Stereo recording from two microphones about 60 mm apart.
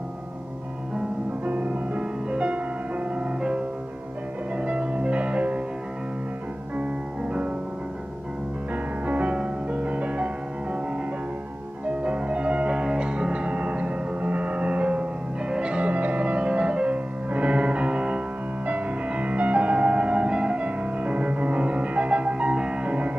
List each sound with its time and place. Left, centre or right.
1.4 s music: right
9.0 s music: right
12.0 s music: centre